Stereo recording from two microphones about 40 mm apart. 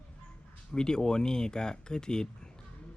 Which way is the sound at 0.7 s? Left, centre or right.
Centre.